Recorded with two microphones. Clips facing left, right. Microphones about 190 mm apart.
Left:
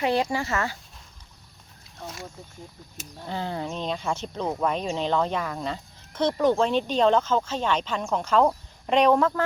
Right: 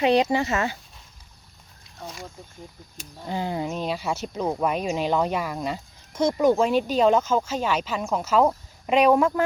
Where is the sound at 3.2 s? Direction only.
15° right (ahead or behind).